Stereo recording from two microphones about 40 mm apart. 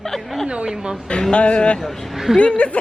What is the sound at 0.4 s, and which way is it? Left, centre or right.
Speech, right.